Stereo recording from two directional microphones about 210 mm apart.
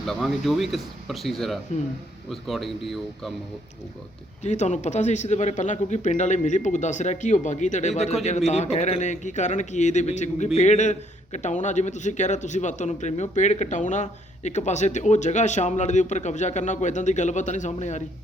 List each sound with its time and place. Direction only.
0.0 s speech: centre (ahead or behind)
4.4 s a man's voice: 35° left (ahead or behind)